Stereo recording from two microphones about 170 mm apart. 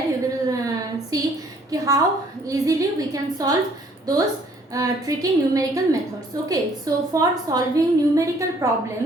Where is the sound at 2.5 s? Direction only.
20° right (ahead or behind).